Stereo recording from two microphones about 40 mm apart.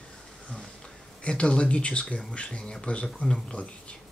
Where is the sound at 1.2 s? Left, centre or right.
Left.